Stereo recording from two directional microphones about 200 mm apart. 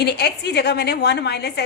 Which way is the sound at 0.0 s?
55° left (ahead or behind).